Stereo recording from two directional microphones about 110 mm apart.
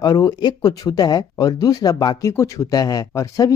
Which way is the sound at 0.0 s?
35° left (ahead or behind).